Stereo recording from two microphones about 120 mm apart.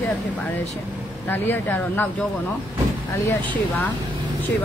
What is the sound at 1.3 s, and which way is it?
Speech, 15° left (ahead or behind).